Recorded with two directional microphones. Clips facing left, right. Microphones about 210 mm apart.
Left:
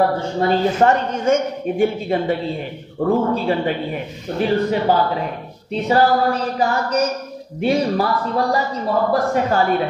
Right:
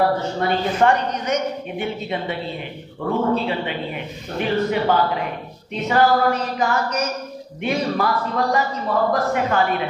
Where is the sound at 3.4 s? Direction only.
40° left (ahead or behind).